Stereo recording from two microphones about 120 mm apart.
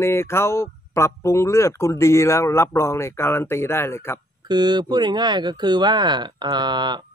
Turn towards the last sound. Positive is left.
turn(degrees=-40)  # may be behind; listen again after turning